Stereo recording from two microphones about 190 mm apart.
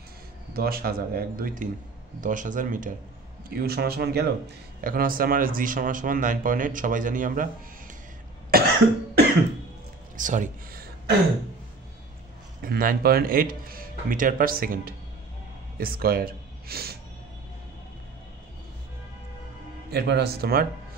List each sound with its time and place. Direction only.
0.5 s speech: 55° right (ahead or behind)
3.4 s speech: 55° right (ahead or behind)
8.5 s cough: 50° right (ahead or behind)
10.1 s speech: 40° right (ahead or behind)
12.6 s speech: 50° right (ahead or behind)
19.9 s speech: 60° right (ahead or behind)